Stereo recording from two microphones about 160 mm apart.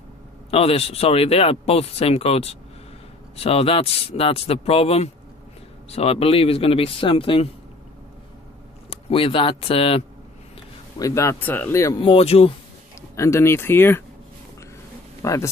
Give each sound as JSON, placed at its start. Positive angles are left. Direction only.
{"t": 0.5, "sound": "speech", "side_deg": 35}
{"t": 8.9, "sound": "speech", "side_deg": 35}
{"t": 11.0, "sound": "speech", "side_deg": 20}
{"t": 12.0, "sound": "speech", "side_deg": 35}
{"t": 13.1, "sound": "speech", "side_deg": 20}
{"t": 15.2, "sound": "speech", "side_deg": 20}